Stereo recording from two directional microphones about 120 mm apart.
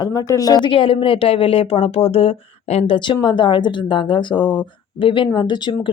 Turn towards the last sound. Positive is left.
turn(degrees=40)  # may be behind; listen again after turning